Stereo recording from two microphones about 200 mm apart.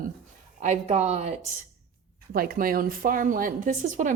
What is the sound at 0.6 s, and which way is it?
Speech, 35° right (ahead or behind).